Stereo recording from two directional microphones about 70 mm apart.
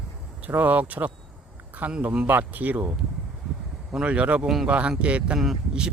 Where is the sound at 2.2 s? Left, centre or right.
Right.